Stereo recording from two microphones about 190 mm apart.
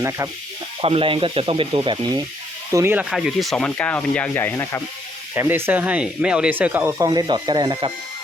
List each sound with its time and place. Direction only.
0.0 s speech: 15° right (ahead or behind)
0.8 s speech: 30° right (ahead or behind)
2.7 s sanding: 10° right (ahead or behind); by 4.8 s 10° left (ahead or behind)
5.3 s speech: 10° right (ahead or behind); by 7.9 s 25° right (ahead or behind)